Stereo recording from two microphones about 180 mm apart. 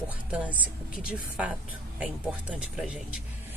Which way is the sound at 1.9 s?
5° right (ahead or behind).